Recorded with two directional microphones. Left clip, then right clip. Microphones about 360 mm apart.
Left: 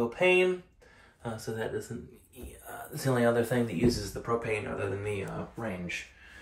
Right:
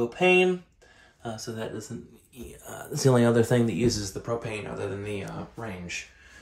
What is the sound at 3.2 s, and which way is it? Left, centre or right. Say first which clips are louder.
Speech: even; centre.